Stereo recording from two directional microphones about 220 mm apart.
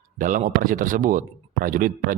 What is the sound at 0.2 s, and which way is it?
Speech, 35° right (ahead or behind).